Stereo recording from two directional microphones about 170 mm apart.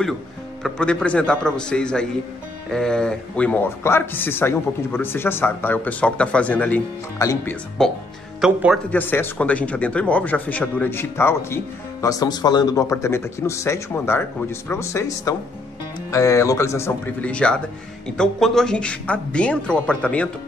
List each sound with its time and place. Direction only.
0.7 s speech: 5° left (ahead or behind)
7.8 s speech: centre (ahead or behind)
8.9 s speech: 10° left (ahead or behind)